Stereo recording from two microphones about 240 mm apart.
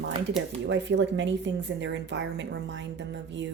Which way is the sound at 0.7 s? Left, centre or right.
Right.